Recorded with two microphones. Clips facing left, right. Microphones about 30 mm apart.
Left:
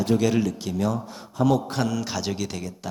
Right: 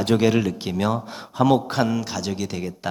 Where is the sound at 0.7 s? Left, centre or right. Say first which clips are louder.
Right 2 dB; right.